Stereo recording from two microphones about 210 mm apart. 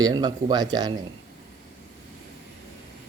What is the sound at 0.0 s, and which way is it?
Speech, 20° right (ahead or behind).